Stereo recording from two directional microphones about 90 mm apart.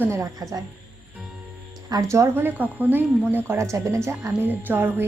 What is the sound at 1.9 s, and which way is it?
Speech, 35° right (ahead or behind).